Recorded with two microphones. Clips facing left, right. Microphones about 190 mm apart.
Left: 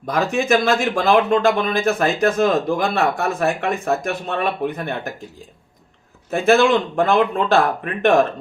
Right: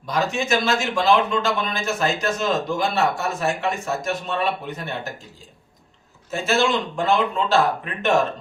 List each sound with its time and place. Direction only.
0.0 s speech: 55° left (ahead or behind)
6.3 s speech: 55° left (ahead or behind)